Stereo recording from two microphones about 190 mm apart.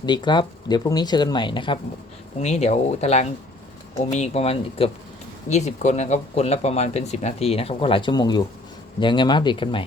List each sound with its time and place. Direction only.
0.0 s speech: 25° left (ahead or behind)